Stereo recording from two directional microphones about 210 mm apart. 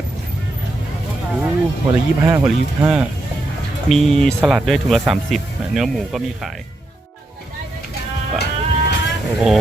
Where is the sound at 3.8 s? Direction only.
Centre (ahead or behind).